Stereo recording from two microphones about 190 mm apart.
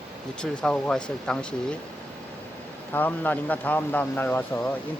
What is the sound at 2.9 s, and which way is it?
Speech, 10° left (ahead or behind).